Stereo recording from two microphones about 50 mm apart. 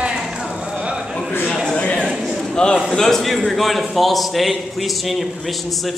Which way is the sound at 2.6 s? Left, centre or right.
Centre.